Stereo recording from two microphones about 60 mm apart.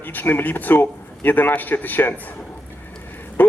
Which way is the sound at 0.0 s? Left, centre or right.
Left.